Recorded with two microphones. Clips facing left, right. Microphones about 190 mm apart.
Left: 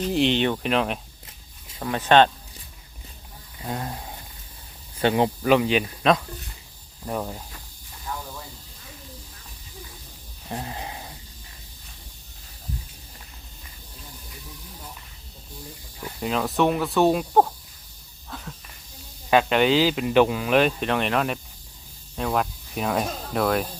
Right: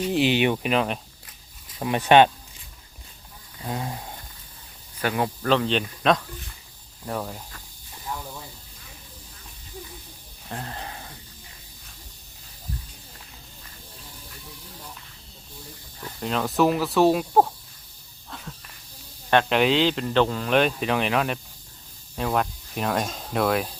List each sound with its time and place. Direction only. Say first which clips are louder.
0.0 s speech: even; 5° right (ahead or behind)
1.8 s speech: right 1 dB; 15° right (ahead or behind)
3.6 s speech: even; centre (ahead or behind)
4.9 s speech: left 5 dB; 25° left (ahead or behind)
5.4 s speech: left 3 dB; 10° left (ahead or behind)
10.5 s a sound: left 2 dB; 15° left (ahead or behind)
16.0 s speech: left 1 dB; 5° left (ahead or behind)
18.3 s snake: left 2 dB; centre (ahead or behind)
19.3 s speech: left 1 dB; centre (ahead or behind)